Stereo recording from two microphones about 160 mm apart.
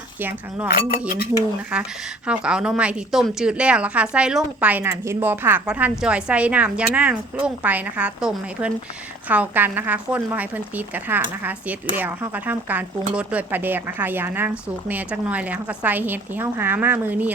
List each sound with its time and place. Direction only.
0.2 s speech: 10° right (ahead or behind)
0.7 s speech: 60° left (ahead or behind)
1.7 s speech: 5° right (ahead or behind)